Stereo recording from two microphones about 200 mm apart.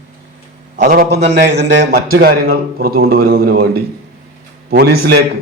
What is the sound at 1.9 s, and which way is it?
A man's voice, 45° right (ahead or behind).